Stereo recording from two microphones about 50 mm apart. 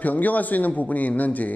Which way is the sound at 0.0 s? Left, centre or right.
Left.